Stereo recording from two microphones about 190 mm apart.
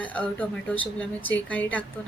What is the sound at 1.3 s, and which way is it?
Speech, 10° left (ahead or behind).